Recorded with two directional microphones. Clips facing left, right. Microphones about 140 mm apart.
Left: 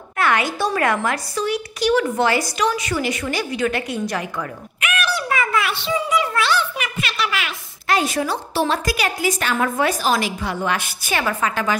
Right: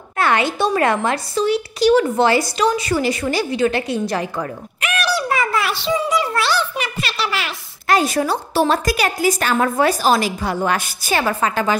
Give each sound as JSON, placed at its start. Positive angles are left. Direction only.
{"t": 0.2, "sound": "speech", "side_deg": -30}